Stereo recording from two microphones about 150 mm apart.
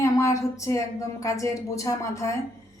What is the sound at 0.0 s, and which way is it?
A woman's voice, 20° left (ahead or behind).